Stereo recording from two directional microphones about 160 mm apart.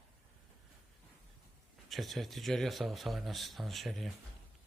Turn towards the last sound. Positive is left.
turn(degrees=0)  # may be behind; listen again after turning